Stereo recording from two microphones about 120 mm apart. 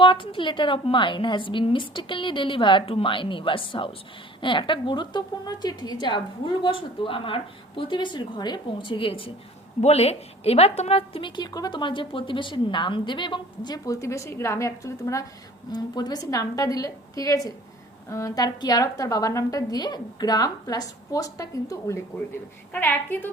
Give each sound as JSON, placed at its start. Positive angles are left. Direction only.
{"t": 0.0, "sound": "a woman's voice", "side_deg": 45}
{"t": 9.8, "sound": "a woman's voice", "side_deg": 60}
{"t": 22.7, "sound": "a woman's voice", "side_deg": 15}